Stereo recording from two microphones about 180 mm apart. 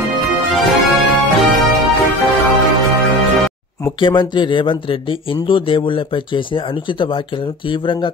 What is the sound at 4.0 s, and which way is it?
Speech, 25° left (ahead or behind).